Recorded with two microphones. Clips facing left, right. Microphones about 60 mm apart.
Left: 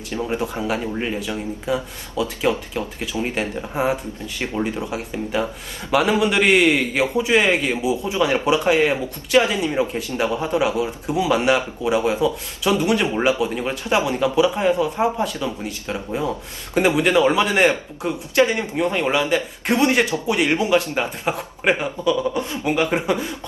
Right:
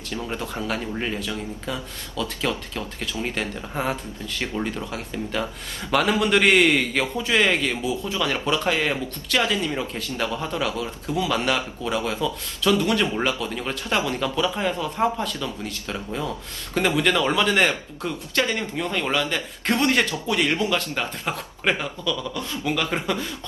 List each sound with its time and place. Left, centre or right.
0.2 s a man's voice: left; by 7.0 s centre
7.0 s speech: centre